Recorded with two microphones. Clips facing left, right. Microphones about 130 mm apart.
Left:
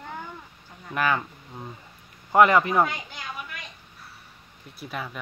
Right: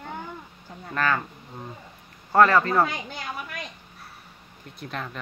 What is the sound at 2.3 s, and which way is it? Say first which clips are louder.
Speech: even; 15° left (ahead or behind).